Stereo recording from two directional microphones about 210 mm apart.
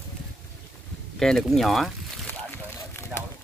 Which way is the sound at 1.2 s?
Centre (ahead or behind).